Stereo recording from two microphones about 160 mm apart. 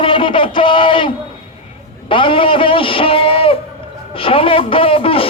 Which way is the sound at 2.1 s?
30° left (ahead or behind).